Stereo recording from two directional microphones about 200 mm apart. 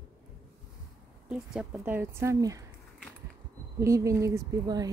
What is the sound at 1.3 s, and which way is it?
Speech, 5° right (ahead or behind).